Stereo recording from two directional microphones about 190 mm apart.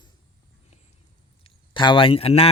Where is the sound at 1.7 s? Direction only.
25° left (ahead or behind).